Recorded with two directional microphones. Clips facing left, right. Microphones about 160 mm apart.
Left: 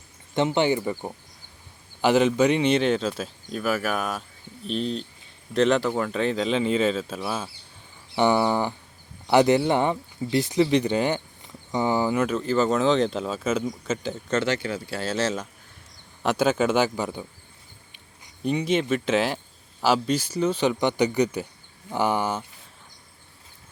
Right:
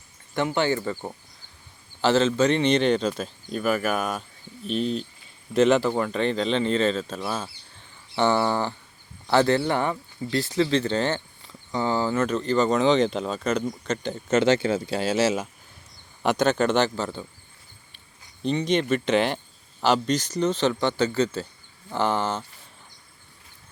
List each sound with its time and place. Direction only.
0.3 s speech: 20° left (ahead or behind); by 14.3 s centre (ahead or behind)
14.4 s speech: 25° right (ahead or behind); by 15.4 s 10° right (ahead or behind)
16.2 s speech: 5° left (ahead or behind)
18.4 s speech: 5° left (ahead or behind)